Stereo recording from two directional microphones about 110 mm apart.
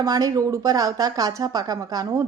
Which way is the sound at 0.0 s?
35° right (ahead or behind).